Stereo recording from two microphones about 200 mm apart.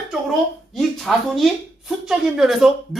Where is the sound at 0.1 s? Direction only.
Centre (ahead or behind).